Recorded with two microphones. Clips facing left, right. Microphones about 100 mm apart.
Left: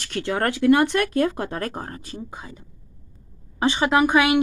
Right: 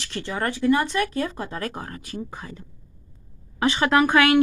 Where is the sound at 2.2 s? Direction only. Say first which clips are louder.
Right 1 dB; 15° left (ahead or behind).